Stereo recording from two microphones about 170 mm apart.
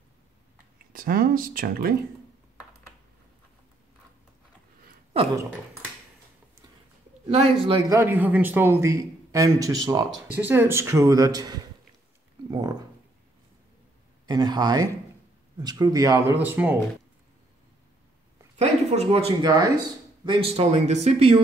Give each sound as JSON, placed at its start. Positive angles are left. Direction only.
{"t": 0.9, "sound": "speech", "side_deg": -55}
{"t": 5.1, "sound": "speech", "side_deg": -35}
{"t": 7.2, "sound": "speech", "side_deg": -35}
{"t": 7.9, "sound": "a man's voice", "side_deg": -15}
{"t": 12.4, "sound": "a sound", "side_deg": -25}
{"t": 14.2, "sound": "speech", "side_deg": -25}
{"t": 18.6, "sound": "speech", "side_deg": -40}
{"t": 19.4, "sound": "speech", "side_deg": -25}
{"t": 20.2, "sound": "speech", "side_deg": -35}